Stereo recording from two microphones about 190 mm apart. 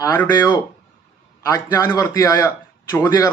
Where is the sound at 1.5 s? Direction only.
15° left (ahead or behind).